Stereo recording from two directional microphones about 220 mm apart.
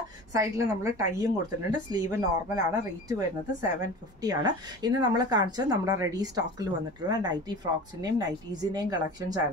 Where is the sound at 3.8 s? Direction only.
15° right (ahead or behind).